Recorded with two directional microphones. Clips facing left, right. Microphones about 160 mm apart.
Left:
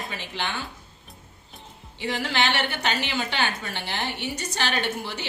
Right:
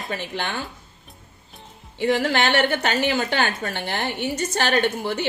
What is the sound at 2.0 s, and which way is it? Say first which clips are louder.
A woman's voice: right 6 dB; 50° right (ahead or behind).